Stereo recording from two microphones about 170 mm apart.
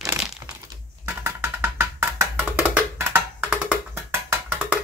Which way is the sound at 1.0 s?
15° right (ahead or behind).